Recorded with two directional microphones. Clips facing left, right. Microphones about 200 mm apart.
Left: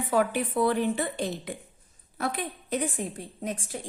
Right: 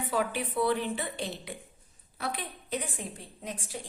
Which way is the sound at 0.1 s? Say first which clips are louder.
Left 6 dB; 45° left (ahead or behind).